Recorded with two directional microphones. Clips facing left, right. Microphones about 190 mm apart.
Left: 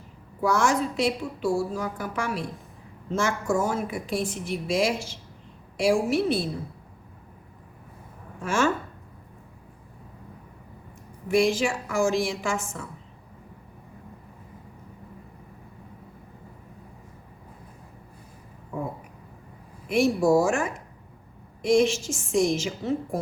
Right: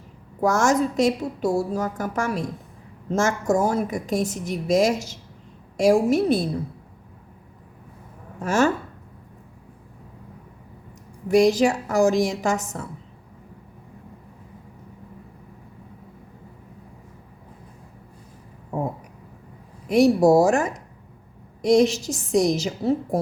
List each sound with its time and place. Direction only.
0.4 s a woman's voice: 45° right (ahead or behind)
8.4 s a woman's voice: 40° right (ahead or behind)
11.3 s a woman's voice: 40° right (ahead or behind)
19.9 s a woman's voice: 40° right (ahead or behind)